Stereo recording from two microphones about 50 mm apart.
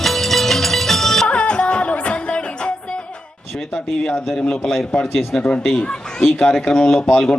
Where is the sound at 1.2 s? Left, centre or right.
Left.